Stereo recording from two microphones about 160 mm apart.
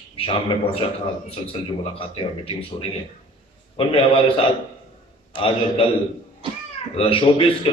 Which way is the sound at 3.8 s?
35° left (ahead or behind).